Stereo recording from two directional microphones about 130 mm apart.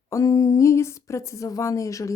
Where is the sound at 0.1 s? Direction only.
25° left (ahead or behind).